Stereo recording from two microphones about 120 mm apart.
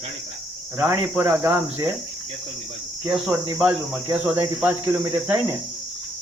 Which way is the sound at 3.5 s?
15° right (ahead or behind).